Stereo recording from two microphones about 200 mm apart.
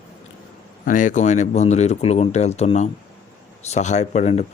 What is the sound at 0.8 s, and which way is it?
Speech, 40° left (ahead or behind).